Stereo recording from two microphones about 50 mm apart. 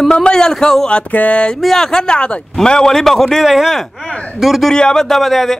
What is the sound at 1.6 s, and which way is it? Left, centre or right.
Speech, centre.